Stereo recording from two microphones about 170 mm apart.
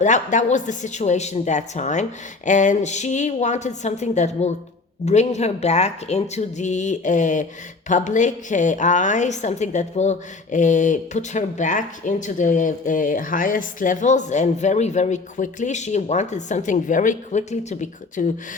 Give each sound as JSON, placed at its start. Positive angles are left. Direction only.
{"t": 0.0, "sound": "a woman's voice", "side_deg": 45}